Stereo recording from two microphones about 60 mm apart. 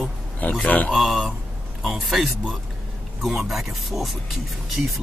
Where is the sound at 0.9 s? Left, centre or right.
Centre.